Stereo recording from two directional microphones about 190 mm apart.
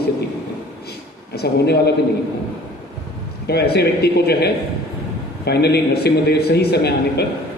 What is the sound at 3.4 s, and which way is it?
A man's voice, 60° left (ahead or behind).